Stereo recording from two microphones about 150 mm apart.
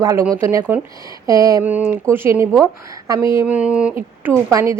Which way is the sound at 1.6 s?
10° right (ahead or behind).